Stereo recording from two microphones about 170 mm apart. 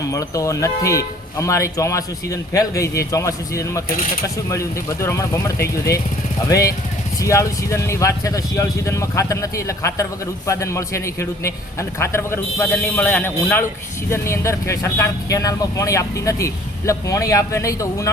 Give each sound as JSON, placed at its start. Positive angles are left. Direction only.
{"t": 0.1, "sound": "speech", "side_deg": 20}